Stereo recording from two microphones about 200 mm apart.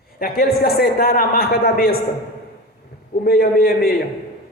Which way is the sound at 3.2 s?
50° left (ahead or behind).